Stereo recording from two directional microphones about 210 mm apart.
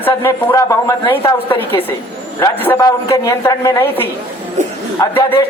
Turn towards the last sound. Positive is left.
turn(degrees=15)  # may be behind; listen again after turning